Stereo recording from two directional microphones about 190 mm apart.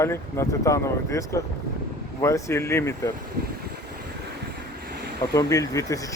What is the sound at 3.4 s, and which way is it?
Vehicle, 55° right (ahead or behind).